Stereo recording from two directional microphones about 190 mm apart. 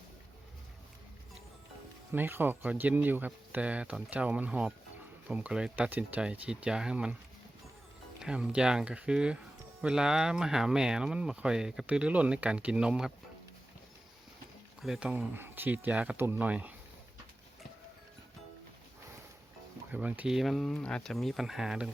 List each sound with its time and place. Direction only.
2.1 s speech: 10° right (ahead or behind)
8.2 s speech: 5° right (ahead or behind)
14.8 s speech: 5° right (ahead or behind)
19.9 s speech: 10° right (ahead or behind)